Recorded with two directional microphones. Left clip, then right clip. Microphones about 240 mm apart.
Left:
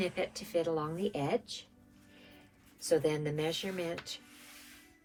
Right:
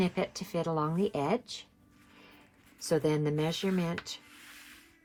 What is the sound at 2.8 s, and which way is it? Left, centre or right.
Speech, right.